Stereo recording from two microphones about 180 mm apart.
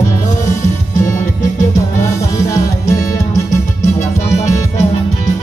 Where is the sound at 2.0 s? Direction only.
15° left (ahead or behind).